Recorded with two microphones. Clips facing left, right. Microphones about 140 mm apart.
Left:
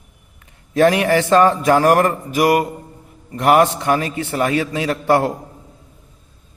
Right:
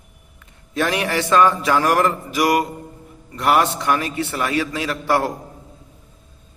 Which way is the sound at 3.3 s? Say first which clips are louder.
Left 4 dB; 45° left (ahead or behind).